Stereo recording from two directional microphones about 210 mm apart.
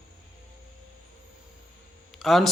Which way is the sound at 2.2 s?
Centre (ahead or behind).